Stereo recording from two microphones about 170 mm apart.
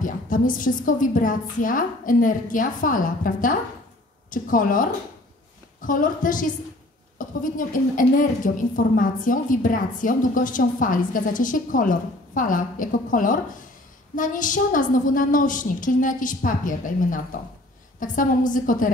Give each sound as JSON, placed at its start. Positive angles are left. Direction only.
{"t": 0.0, "sound": "a woman's voice", "side_deg": 50}